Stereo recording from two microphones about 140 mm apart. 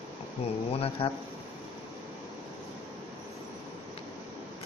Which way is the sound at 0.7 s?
45° left (ahead or behind).